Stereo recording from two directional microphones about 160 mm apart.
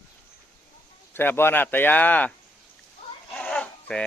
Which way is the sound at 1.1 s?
15° left (ahead or behind).